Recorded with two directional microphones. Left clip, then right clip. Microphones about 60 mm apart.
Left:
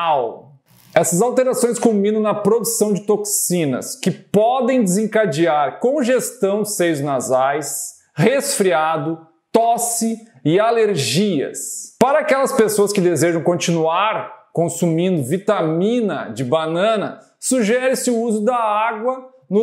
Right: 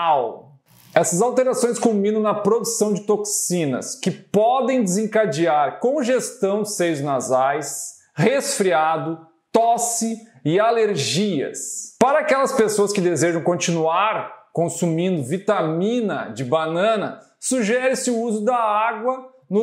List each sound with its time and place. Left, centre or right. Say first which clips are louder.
0.9 s speech: left 2 dB; left
9.5 s speech: left 2 dB; left